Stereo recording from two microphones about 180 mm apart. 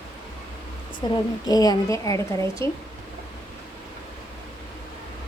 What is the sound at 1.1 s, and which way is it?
A woman's voice, 20° left (ahead or behind).